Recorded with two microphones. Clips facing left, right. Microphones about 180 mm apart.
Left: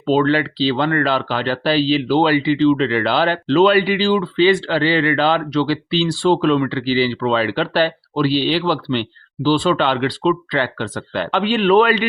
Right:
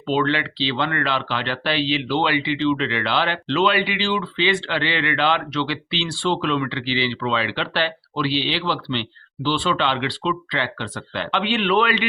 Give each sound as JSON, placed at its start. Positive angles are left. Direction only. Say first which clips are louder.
{"t": 0.0, "sound": "speech", "louder": "left 6 dB", "side_deg": 40}